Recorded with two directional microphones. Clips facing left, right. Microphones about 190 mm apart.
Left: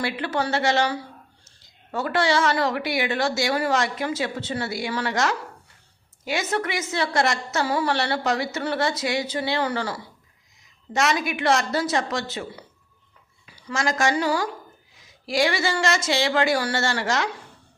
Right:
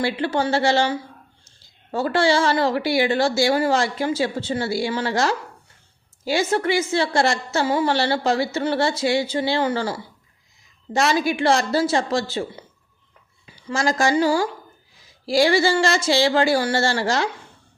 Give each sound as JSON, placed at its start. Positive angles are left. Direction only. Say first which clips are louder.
{"t": 0.0, "sound": "a woman's voice", "louder": "right 4 dB", "side_deg": -30}